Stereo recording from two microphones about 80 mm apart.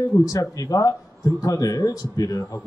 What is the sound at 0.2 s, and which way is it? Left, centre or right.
A man's voice, left.